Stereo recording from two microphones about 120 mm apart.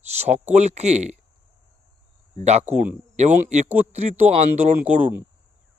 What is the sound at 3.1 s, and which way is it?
Speech, 75° right (ahead or behind).